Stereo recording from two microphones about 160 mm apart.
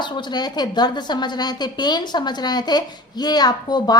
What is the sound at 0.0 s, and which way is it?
A woman's voice, 30° left (ahead or behind).